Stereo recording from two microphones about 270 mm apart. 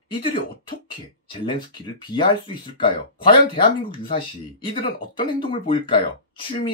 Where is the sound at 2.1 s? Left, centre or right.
Centre.